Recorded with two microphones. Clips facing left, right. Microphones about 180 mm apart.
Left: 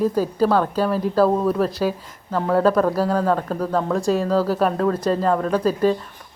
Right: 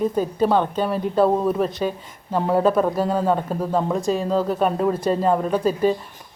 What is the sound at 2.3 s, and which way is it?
Speech, 25° right (ahead or behind).